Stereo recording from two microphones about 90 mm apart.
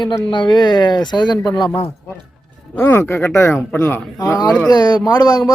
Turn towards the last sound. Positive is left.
turn(degrees=50)  # may be behind; listen again after turning